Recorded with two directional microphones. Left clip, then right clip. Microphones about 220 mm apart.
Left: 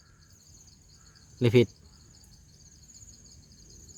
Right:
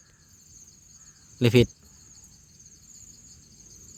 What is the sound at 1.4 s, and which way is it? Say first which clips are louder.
Speech: right 2 dB; 15° right (ahead or behind).